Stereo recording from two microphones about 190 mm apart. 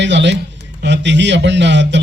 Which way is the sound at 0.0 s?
70° right (ahead or behind).